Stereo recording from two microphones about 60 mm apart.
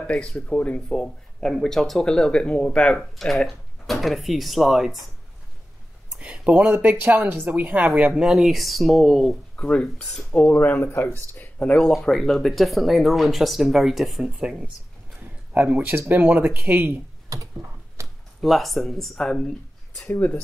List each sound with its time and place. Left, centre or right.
0.0 s speech: centre
3.2 s speech: centre
6.1 s speech: centre
8.2 s speech: centre
9.6 s speech: centre
10.8 s speech: left
11.9 s speech: centre
15.5 s speech: right
17.3 s mechanisms: right
18.0 s speech: centre